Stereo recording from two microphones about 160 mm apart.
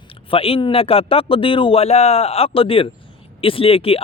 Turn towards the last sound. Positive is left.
turn(degrees=35)  # may be behind; listen again after turning